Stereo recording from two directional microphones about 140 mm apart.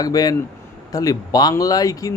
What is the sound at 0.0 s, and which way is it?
Speech, 25° left (ahead or behind).